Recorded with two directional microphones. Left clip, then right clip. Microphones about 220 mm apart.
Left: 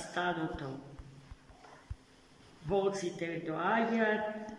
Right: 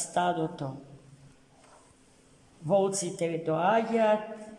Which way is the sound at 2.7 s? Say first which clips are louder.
Right 6 dB; 45° right (ahead or behind).